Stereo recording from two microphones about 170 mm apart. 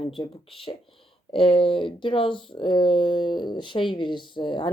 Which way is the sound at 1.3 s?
30° left (ahead or behind).